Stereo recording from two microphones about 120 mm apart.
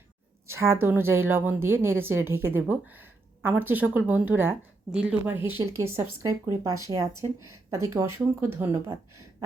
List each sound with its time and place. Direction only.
0.4 s a woman's voice: 20° right (ahead or behind)